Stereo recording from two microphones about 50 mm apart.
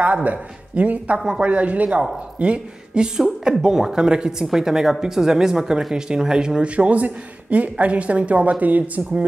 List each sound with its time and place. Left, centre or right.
0.0 s speech: right